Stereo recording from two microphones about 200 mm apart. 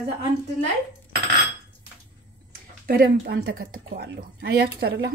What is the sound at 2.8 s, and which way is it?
Speech, 50° right (ahead or behind).